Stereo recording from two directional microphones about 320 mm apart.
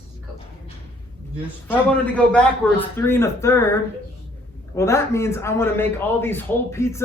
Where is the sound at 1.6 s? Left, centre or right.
Centre.